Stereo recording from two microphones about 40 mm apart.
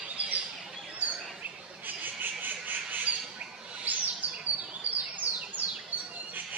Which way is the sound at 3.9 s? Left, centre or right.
Right.